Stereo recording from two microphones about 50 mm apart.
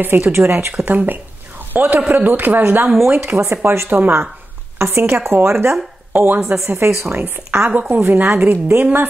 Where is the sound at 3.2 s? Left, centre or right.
Right.